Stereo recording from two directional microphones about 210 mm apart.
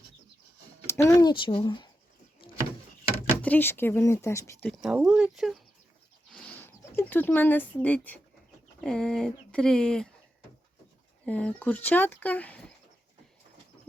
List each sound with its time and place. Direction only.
0.9 s speech: 15° left (ahead or behind)
2.4 s a sound: 25° left (ahead or behind)
3.4 s speech: 10° left (ahead or behind)
6.3 s a sound: 10° left (ahead or behind)
8.8 s speech: 5° left (ahead or behind)
11.3 s speech: 5° left (ahead or behind)